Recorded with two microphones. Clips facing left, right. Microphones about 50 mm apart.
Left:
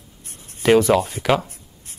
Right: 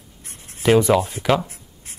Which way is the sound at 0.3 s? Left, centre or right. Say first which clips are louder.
Right 1 dB; right.